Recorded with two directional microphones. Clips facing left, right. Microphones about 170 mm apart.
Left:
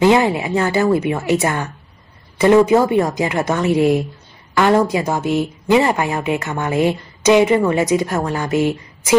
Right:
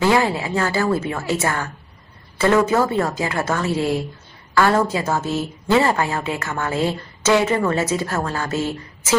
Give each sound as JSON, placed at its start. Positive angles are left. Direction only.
{"t": 0.0, "sound": "speech", "side_deg": 20}